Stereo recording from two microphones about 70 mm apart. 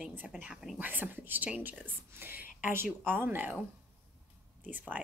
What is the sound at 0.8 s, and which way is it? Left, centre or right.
Speech, right.